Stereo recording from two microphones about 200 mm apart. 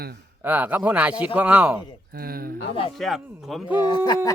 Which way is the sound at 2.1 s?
50° right (ahead or behind).